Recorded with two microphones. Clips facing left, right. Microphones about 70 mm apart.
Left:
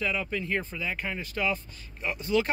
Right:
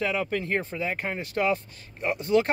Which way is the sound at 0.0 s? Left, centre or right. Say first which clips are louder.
Right 3 dB; right.